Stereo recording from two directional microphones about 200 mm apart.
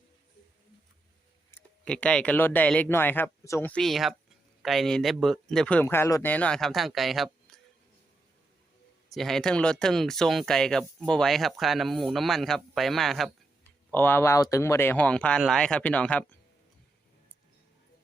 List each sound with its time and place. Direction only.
1.5 s speech: 5° left (ahead or behind)
9.1 s speech: centre (ahead or behind)